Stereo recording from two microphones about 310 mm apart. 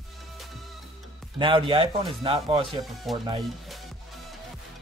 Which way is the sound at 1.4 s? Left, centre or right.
Centre.